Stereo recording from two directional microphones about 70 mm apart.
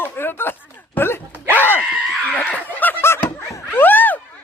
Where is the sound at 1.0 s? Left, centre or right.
Left.